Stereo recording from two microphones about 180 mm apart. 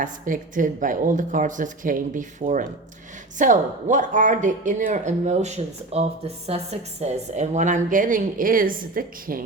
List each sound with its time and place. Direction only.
0.0 s speech: 45° right (ahead or behind)